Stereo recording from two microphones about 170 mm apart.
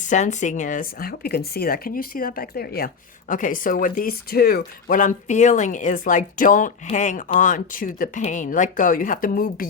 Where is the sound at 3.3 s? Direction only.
55° left (ahead or behind).